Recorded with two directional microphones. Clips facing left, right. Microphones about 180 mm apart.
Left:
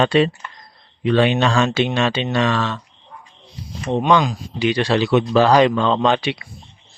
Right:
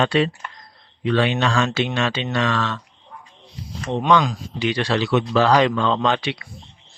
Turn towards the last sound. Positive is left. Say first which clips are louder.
# left 3 dB
turn(degrees=15)  # may be behind; listen again after turning